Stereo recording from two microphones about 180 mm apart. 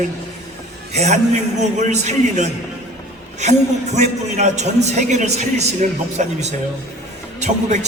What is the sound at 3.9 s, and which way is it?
A man's voice, 40° right (ahead or behind).